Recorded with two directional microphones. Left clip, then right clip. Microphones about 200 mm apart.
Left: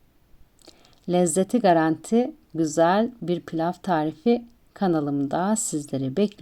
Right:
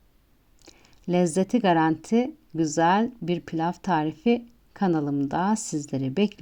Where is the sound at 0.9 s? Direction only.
10° right (ahead or behind).